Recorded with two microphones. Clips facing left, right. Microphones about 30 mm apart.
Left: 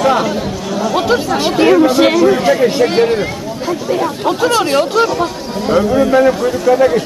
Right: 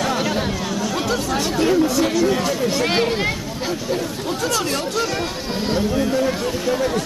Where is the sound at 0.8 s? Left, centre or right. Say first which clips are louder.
Left 11 dB; centre.